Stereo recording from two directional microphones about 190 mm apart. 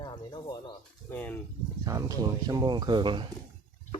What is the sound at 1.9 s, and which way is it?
Speech, 15° right (ahead or behind).